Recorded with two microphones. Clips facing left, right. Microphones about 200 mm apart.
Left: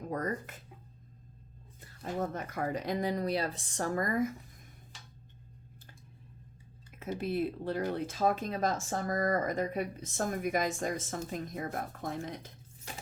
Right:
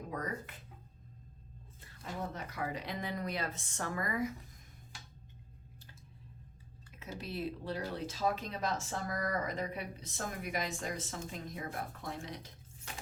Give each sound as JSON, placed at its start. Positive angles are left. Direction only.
{"t": 0.1, "sound": "speech", "side_deg": 45}
{"t": 2.0, "sound": "speech", "side_deg": 50}
{"t": 7.0, "sound": "speech", "side_deg": 50}